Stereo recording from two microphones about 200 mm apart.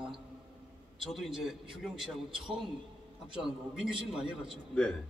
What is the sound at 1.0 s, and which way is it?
A man's voice, centre (ahead or behind).